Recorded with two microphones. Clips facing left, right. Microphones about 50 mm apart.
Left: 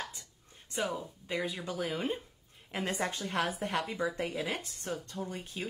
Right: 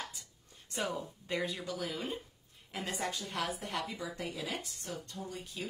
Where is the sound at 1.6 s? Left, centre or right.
Left.